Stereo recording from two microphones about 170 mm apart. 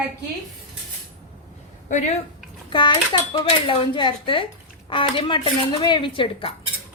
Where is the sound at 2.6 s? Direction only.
30° left (ahead or behind).